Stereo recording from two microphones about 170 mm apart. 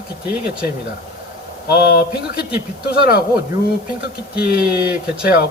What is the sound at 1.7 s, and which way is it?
Speech, 75° left (ahead or behind).